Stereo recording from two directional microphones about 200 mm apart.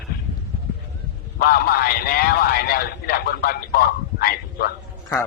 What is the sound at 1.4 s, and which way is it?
A man's voice, 50° left (ahead or behind).